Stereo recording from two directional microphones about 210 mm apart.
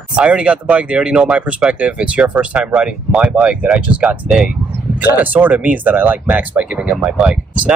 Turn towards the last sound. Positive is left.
turn(degrees=-5)  # may be behind; listen again after turning